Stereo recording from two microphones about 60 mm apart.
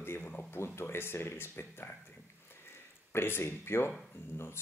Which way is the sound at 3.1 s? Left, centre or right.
Left.